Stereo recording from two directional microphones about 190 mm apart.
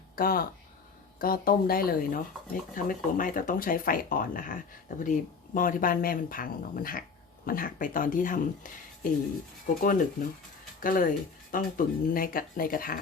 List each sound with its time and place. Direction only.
0.2 s speech: 50° left (ahead or behind)